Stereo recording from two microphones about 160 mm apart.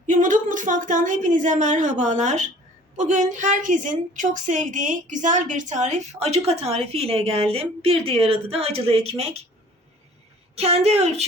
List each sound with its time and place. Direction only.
0.1 s a woman's voice: 55° right (ahead or behind)
10.6 s a woman's voice: 40° right (ahead or behind)